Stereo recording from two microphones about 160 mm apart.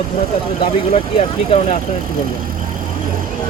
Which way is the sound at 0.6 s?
40° left (ahead or behind).